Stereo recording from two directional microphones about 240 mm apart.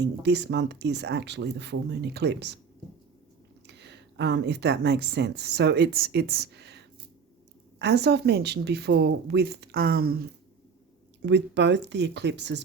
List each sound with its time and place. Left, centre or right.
0.0 s speech: right
3.7 s speech: right